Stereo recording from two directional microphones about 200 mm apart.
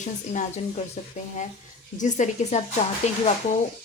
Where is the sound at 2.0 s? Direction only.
35° left (ahead or behind).